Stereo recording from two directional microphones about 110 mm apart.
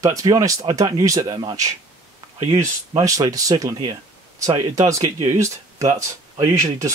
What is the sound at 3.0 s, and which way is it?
Speech, 30° right (ahead or behind).